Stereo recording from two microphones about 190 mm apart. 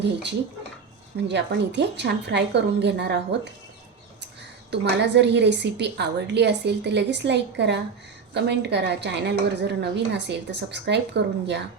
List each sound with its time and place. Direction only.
0.0 s a woman's voice: 65° right (ahead or behind)
4.7 s a woman's voice: 65° right (ahead or behind)